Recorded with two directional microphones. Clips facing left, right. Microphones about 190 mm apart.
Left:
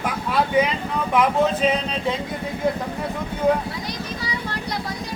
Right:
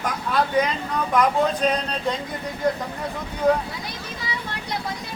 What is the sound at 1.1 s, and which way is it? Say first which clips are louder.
Speech: left 1 dB; 5° left (ahead or behind).